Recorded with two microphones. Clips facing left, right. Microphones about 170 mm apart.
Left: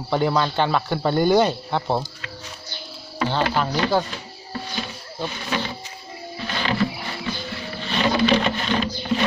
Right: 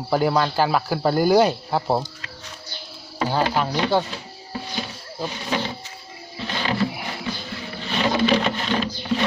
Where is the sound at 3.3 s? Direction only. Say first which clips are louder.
Right 1 dB; 5° right (ahead or behind).